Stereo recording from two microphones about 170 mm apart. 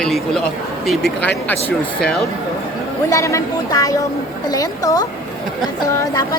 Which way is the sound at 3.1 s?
20° left (ahead or behind).